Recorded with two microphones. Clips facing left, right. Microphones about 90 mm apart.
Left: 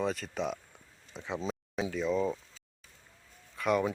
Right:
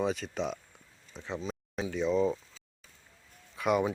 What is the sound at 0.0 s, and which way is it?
Speech, centre (ahead or behind).